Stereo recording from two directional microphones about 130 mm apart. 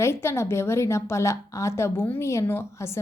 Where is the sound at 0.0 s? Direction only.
20° left (ahead or behind).